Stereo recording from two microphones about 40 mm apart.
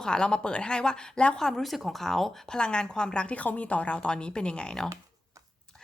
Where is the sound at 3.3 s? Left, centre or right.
Left.